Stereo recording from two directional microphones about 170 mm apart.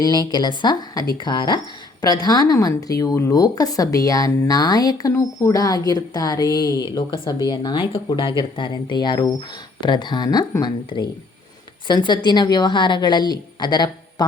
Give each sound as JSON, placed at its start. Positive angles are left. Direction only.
{"t": 0.0, "sound": "speech", "side_deg": 25}